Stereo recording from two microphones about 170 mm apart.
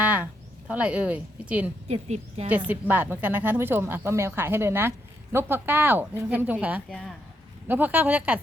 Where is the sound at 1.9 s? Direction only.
35° right (ahead or behind).